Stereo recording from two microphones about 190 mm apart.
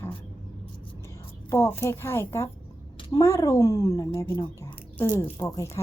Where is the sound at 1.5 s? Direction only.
15° left (ahead or behind).